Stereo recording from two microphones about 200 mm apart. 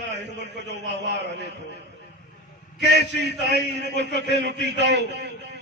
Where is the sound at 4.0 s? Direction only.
60° right (ahead or behind).